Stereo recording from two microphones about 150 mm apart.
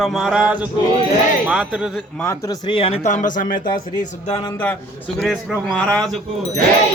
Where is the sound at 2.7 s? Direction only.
40° left (ahead or behind); by 3.4 s 55° left (ahead or behind).